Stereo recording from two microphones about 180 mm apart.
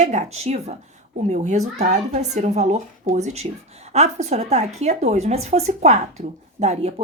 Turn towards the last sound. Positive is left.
turn(degrees=-40)  # may be behind; listen again after turning